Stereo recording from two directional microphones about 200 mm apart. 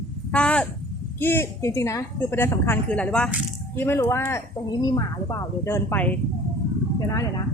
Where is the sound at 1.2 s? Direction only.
10° left (ahead or behind).